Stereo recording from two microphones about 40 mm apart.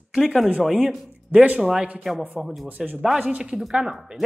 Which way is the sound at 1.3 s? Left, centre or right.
Right.